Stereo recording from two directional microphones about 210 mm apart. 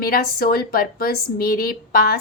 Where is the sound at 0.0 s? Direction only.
45° left (ahead or behind).